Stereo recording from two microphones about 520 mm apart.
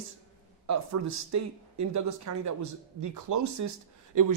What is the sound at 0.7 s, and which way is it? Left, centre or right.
Speech, right.